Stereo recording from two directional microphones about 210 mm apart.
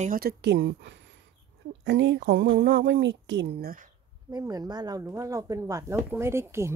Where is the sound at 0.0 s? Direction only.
45° right (ahead or behind).